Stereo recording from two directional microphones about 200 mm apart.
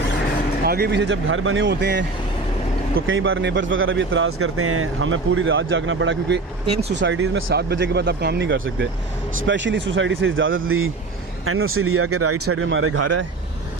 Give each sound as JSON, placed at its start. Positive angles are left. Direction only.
{"t": 0.6, "sound": "speech", "side_deg": -50}
{"t": 3.1, "sound": "speech", "side_deg": -80}
{"t": 7.7, "sound": "speech", "side_deg": -55}